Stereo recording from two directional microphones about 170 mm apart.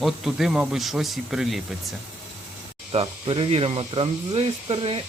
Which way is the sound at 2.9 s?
30° right (ahead or behind).